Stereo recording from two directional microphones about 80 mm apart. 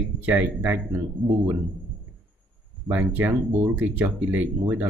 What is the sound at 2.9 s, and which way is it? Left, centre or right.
Speech, right.